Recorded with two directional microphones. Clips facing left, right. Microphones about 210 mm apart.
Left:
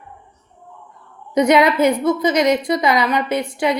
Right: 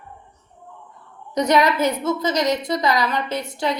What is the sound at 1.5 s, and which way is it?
A woman's voice, 20° left (ahead or behind).